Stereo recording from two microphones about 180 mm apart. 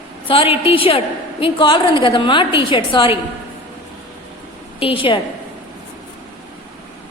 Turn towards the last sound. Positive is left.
turn(degrees=30)  # may be behind; listen again after turning